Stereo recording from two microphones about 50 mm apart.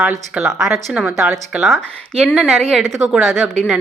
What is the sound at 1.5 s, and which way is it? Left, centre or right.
Speech, right.